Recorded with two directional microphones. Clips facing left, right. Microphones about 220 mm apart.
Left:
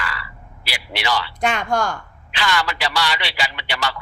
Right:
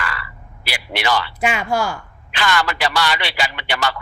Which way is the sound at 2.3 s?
50° right (ahead or behind).